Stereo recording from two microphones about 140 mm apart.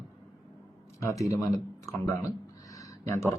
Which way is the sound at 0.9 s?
25° left (ahead or behind).